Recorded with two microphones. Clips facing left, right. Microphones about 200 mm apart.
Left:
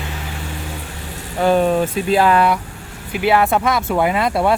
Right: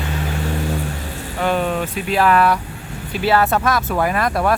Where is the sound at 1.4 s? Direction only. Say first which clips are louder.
Left 5 dB; 35° left (ahead or behind).